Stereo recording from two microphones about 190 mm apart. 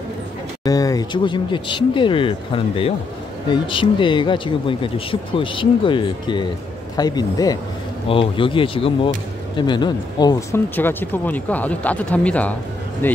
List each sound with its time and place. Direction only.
0.7 s speech: 20° left (ahead or behind)